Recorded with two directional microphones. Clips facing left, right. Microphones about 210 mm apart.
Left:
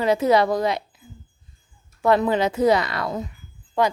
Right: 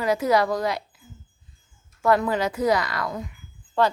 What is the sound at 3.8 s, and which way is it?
Speech, 15° left (ahead or behind).